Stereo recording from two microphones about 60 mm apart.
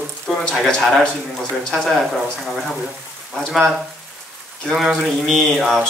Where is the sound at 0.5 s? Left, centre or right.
Centre.